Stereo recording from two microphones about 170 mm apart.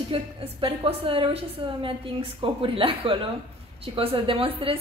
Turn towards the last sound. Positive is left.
turn(degrees=-35)  # may be behind; listen again after turning